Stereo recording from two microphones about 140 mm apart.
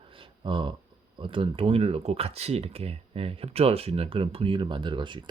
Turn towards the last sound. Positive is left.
turn(degrees=-35)  # may be behind; listen again after turning